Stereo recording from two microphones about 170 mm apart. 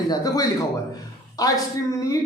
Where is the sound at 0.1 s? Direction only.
20° left (ahead or behind).